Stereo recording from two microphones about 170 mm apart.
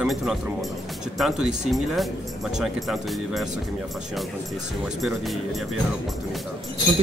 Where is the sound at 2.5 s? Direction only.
Centre (ahead or behind).